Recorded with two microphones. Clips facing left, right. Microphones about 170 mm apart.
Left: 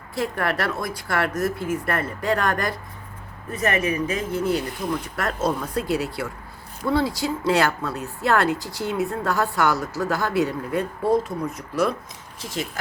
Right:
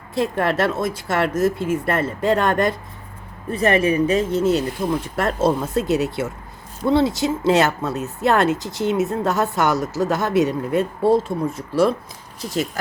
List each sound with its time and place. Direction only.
0.1 s speech: 25° right (ahead or behind); by 12.8 s 40° right (ahead or behind)